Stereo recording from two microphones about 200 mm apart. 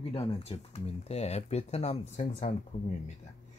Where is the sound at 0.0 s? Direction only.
30° left (ahead or behind).